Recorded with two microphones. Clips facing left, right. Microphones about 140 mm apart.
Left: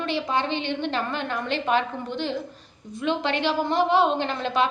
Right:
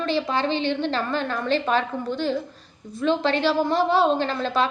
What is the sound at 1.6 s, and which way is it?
A woman's voice, 15° left (ahead or behind).